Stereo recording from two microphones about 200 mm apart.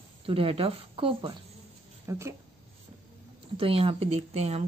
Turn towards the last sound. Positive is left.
turn(degrees=-30)  # may be behind; listen again after turning